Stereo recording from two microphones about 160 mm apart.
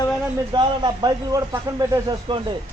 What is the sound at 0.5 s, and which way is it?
A man's voice, 25° right (ahead or behind).